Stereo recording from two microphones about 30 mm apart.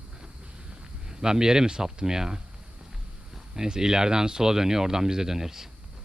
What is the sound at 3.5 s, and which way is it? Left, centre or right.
Speech, right.